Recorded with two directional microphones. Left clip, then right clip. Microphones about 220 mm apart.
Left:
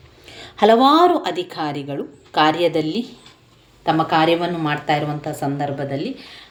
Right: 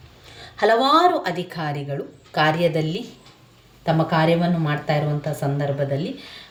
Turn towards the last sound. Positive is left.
turn(degrees=45)  # may be behind; listen again after turning